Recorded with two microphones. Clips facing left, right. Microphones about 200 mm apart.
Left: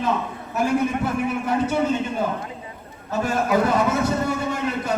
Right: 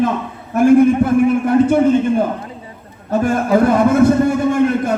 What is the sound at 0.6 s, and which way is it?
A man's voice, 50° right (ahead or behind).